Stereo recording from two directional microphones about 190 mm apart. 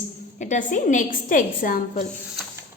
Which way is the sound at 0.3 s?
40° left (ahead or behind).